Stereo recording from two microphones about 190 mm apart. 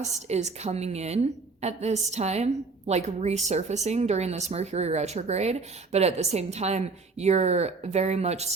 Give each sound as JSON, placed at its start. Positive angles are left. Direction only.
{"t": 0.0, "sound": "a woman's voice", "side_deg": -35}